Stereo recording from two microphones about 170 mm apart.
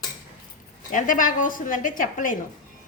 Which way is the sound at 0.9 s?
50° left (ahead or behind).